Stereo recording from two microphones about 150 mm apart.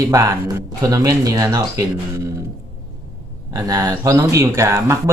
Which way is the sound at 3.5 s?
25° right (ahead or behind).